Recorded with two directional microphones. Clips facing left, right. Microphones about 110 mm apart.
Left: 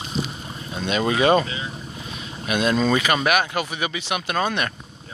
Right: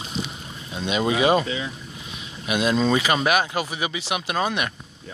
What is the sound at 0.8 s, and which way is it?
Speech, 15° right (ahead or behind).